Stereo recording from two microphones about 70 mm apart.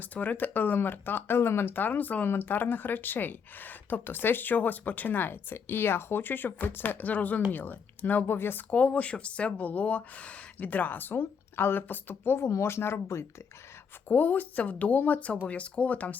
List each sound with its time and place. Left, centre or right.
0.0 s speech: left
8.7 s speech: centre; by 13.2 s left
14.1 s speech: left